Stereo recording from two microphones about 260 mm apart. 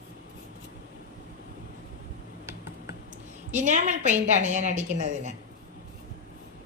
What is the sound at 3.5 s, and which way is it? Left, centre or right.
A woman's voice, right.